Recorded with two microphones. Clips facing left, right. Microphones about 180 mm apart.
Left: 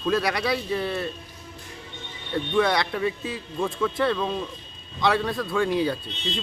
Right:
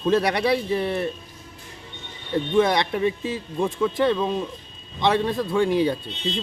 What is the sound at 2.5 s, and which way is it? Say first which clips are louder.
A man's voice: right 3 dB; 20° right (ahead or behind).